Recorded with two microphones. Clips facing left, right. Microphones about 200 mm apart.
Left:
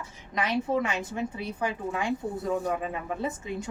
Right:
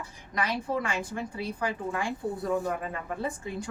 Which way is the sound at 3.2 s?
20° left (ahead or behind).